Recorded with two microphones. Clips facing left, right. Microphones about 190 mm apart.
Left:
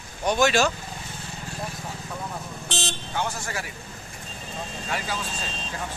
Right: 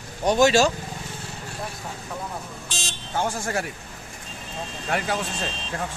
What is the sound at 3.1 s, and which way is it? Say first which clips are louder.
Speech: right 5 dB; 45° right (ahead or behind).